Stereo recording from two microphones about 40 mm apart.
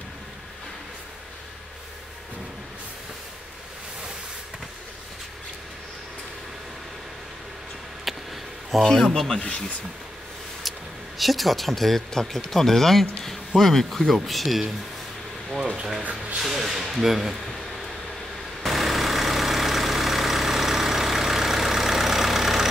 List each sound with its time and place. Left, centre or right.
8.7 s speech: centre
11.1 s speech: centre
15.6 s a sound: right
16.0 s speech: right
16.3 s speech: centre
18.6 s vehicle: centre